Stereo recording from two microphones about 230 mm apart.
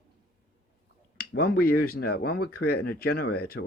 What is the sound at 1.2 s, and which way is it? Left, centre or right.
Speech, left.